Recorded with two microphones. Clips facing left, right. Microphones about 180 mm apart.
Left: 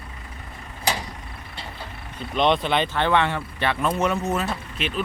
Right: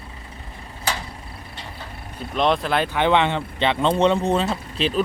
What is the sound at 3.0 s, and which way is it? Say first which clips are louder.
Speech: right 6 dB; 20° right (ahead or behind).